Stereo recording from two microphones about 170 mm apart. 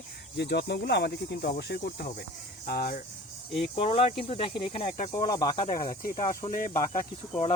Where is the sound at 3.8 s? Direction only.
35° left (ahead or behind).